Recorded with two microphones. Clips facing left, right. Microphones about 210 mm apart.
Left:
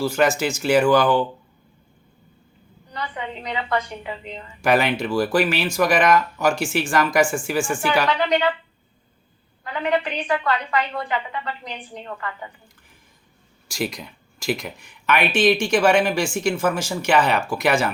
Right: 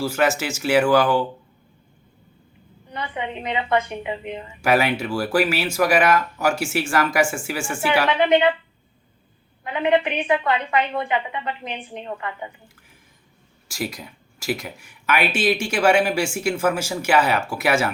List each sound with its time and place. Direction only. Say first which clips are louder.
0.0 s speech: left 2 dB; 5° right (ahead or behind)
2.9 s a woman's voice: right 2 dB; 20° right (ahead or behind)
4.6 s speech: even; 5° right (ahead or behind)
8.0 s a woman's voice: right 3 dB; 20° right (ahead or behind)
9.6 s a woman's voice: right 3 dB; 20° right (ahead or behind)
13.7 s speech: left 2 dB; 5° right (ahead or behind)